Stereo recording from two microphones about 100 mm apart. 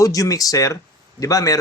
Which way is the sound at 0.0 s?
35° left (ahead or behind).